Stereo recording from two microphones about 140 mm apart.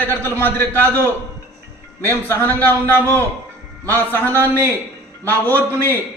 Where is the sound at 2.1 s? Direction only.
15° left (ahead or behind).